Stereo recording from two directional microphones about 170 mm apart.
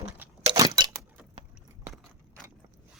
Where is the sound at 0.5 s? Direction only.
20° right (ahead or behind).